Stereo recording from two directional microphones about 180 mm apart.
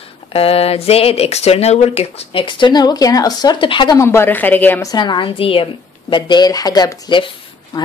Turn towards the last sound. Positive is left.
turn(degrees=25)  # may be behind; listen again after turning